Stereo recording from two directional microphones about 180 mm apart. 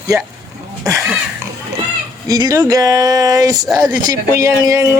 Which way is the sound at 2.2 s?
20° right (ahead or behind).